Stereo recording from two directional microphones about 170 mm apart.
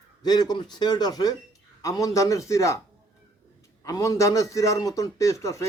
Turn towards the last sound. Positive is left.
turn(degrees=20)  # may be behind; listen again after turning